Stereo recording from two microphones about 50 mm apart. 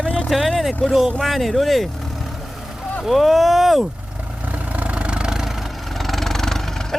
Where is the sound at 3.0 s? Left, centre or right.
Centre.